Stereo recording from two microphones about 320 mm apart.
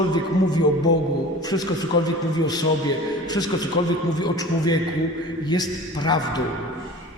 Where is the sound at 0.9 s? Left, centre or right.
Left.